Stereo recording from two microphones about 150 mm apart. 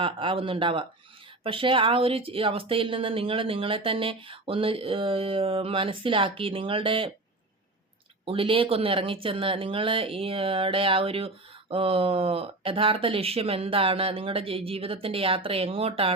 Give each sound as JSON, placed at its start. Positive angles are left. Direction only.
{"t": 0.0, "sound": "a woman's voice", "side_deg": -35}
{"t": 8.2, "sound": "a woman's voice", "side_deg": -35}